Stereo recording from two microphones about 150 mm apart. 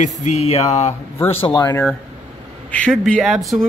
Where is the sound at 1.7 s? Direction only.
10° left (ahead or behind).